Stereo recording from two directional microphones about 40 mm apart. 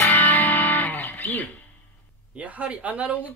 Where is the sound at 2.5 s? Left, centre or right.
Right.